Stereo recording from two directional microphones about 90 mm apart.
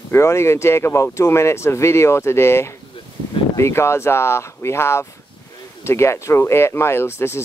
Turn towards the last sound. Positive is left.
turn(degrees=30)  # may be behind; listen again after turning